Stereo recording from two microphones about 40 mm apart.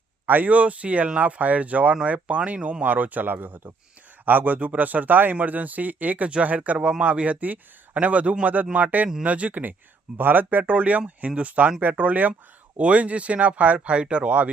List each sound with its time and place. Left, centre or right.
0.3 s speech: right
2.8 s speech: right
10.2 s speech: right
10.6 s speech: right
13.7 s speech: right
14.3 s speech: right